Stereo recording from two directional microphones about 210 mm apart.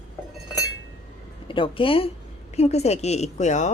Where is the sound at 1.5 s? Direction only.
25° left (ahead or behind).